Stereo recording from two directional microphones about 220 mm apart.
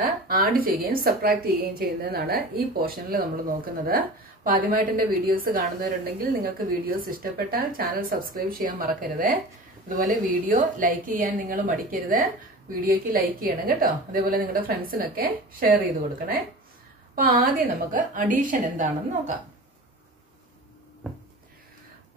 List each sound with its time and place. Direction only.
0.0 s a woman's voice: 40° right (ahead or behind)
17.1 s speech: 40° right (ahead or behind)